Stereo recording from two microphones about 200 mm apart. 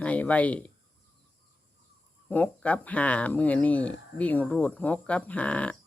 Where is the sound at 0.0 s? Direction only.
5° left (ahead or behind).